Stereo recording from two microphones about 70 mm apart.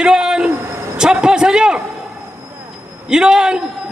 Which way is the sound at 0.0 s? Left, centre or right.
Centre.